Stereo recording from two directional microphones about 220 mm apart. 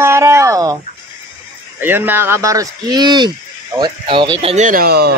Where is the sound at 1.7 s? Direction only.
10° right (ahead or behind); by 5.2 s 45° right (ahead or behind).